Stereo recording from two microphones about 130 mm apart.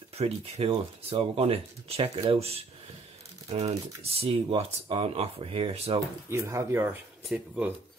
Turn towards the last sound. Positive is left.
turn(degrees=-10)  # may be behind; listen again after turning